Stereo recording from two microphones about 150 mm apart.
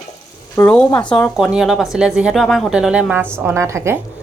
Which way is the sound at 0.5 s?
10° left (ahead or behind).